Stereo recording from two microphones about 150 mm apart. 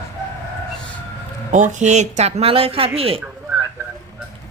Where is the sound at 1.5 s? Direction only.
55° right (ahead or behind); by 3.2 s 40° right (ahead or behind).